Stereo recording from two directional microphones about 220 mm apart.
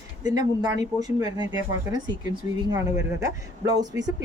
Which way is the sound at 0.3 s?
15° right (ahead or behind).